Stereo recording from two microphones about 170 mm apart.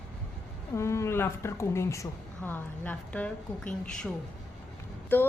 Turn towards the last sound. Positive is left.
turn(degrees=10)  # may be behind; listen again after turning